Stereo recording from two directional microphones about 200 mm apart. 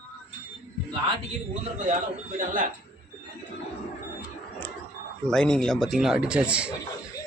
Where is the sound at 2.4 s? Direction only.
45° right (ahead or behind).